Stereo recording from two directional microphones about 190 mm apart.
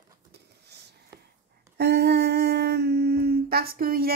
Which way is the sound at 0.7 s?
60° right (ahead or behind).